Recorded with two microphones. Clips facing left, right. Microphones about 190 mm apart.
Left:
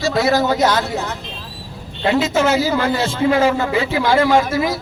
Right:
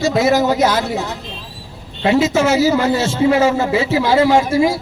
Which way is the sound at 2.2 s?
5° right (ahead or behind).